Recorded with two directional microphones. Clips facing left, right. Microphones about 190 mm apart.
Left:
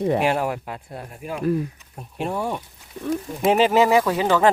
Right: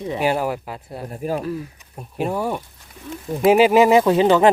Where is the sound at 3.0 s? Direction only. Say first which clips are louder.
Left 9 dB; 60° left (ahead or behind).